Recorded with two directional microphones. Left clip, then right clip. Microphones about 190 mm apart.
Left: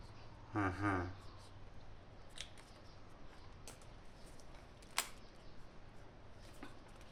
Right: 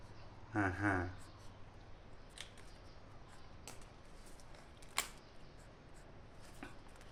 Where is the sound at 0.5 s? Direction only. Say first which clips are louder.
Right 2 dB; 25° right (ahead or behind).